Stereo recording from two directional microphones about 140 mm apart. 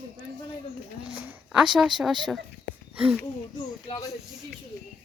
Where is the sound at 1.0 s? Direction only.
5° right (ahead or behind).